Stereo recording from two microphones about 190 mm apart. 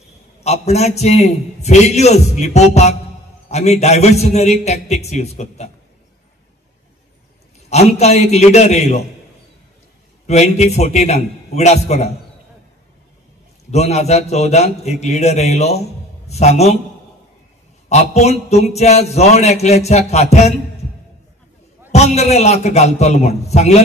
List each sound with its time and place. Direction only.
0.4 s a man's voice: 35° left (ahead or behind)
7.7 s a man's voice: 35° left (ahead or behind)
10.2 s a man's voice: 35° left (ahead or behind)
13.7 s a man's voice: 35° left (ahead or behind)
17.8 s a man's voice: 35° left (ahead or behind)
21.9 s a man's voice: 35° left (ahead or behind)